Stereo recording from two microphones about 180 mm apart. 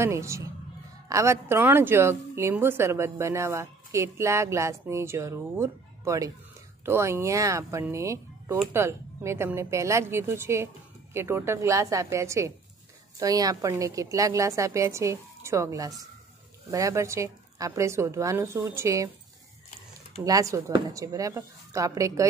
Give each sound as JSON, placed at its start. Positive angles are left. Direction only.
{"t": 0.0, "sound": "a woman's voice", "side_deg": -15}
{"t": 20.2, "sound": "a woman's voice", "side_deg": -20}